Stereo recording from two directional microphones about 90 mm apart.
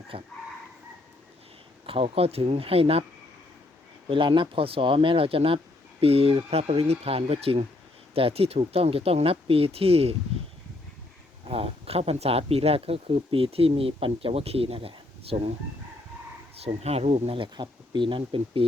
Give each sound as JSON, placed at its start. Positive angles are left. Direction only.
{"t": 0.1, "sound": "speech", "side_deg": -90}
{"t": 1.9, "sound": "speech", "side_deg": -90}
{"t": 4.1, "sound": "speech", "side_deg": -65}
{"t": 11.4, "sound": "speech", "side_deg": -90}
{"t": 17.0, "sound": "speech", "side_deg": -80}